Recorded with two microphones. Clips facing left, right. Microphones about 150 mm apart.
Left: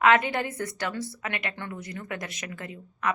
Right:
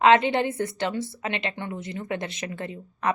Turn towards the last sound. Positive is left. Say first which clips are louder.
# right 3 dB
turn(degrees=-30)  # may be behind; listen again after turning